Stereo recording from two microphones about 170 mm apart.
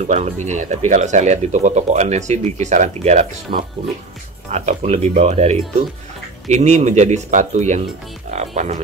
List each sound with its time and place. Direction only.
0.0 s speech: 40° right (ahead or behind)